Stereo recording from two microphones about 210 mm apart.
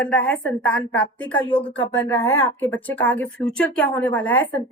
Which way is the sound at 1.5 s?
25° left (ahead or behind).